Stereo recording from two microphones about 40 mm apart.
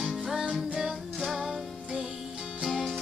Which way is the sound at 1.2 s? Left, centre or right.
Centre.